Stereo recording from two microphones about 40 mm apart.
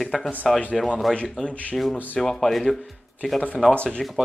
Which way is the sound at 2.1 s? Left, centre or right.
Centre.